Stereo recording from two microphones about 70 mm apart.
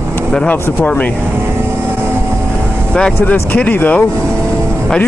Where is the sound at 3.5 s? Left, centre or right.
Left.